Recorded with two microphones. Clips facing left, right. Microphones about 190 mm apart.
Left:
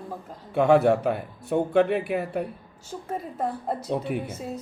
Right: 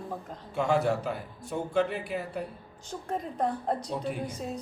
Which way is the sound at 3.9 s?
60° left (ahead or behind).